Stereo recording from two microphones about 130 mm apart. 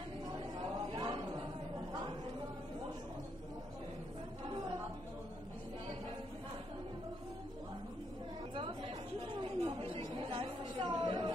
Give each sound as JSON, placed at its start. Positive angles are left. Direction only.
{"t": 0.9, "sound": "chatter", "side_deg": -35}
{"t": 9.3, "sound": "chatter", "side_deg": -45}